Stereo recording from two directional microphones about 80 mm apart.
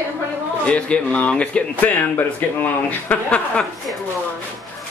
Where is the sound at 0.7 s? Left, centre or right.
Centre.